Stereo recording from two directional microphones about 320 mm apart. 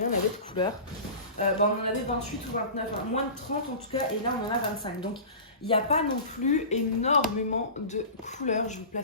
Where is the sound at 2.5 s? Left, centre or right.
Left.